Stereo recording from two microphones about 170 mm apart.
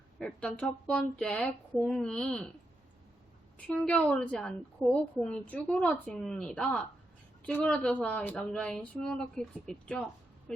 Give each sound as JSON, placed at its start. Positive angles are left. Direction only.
{"t": 0.2, "sound": "a child's voice", "side_deg": 5}
{"t": 3.6, "sound": "speech", "side_deg": 5}